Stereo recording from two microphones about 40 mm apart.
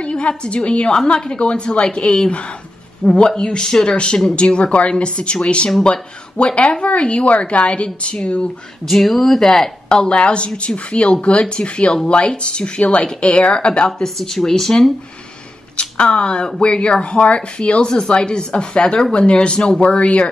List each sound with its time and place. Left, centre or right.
0.0 s speech: left
8.8 s speech: centre
9.8 s speech: left
13.8 s speech: centre
15.7 s speech: left